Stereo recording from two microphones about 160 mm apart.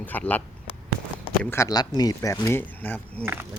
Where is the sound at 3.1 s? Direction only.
15° right (ahead or behind).